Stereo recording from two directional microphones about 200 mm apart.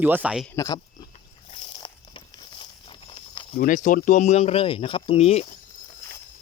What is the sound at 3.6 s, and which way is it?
Speech, 40° left (ahead or behind).